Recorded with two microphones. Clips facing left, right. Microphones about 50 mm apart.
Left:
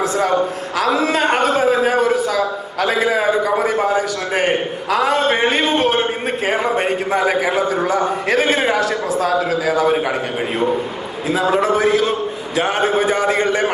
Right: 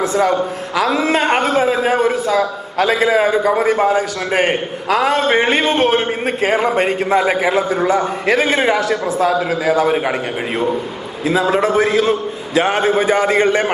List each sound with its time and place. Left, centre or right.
0.0 s a man's voice: right
3.2 s a man's voice: right
8.5 s a man's voice: right
11.5 s a man's voice: right